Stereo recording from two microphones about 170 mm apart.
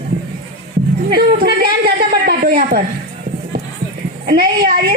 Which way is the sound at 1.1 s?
70° right (ahead or behind).